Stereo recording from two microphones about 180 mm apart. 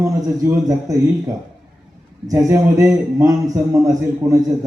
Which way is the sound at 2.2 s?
15° right (ahead or behind).